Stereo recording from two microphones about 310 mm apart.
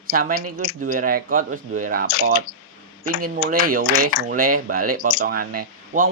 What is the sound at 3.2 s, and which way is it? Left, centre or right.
Speech, right.